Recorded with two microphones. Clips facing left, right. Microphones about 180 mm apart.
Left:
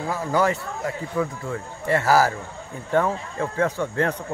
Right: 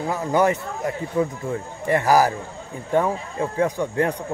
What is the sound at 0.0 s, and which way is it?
Speech, 20° right (ahead or behind).